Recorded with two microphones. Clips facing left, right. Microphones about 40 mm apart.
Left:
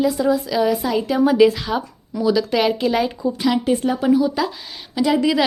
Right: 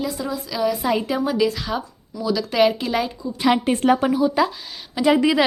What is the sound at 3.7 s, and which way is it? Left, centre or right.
Speech, right.